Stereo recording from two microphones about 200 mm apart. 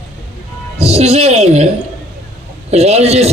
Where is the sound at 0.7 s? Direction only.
30° right (ahead or behind).